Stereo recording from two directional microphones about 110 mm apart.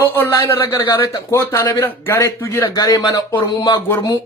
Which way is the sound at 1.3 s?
25° left (ahead or behind).